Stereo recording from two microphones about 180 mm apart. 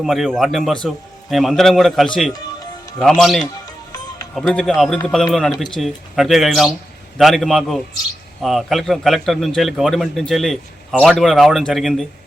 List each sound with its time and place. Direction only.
0.0 s a man's voice: centre (ahead or behind)
3.7 s music: 20° left (ahead or behind)
4.4 s a man's voice: centre (ahead or behind)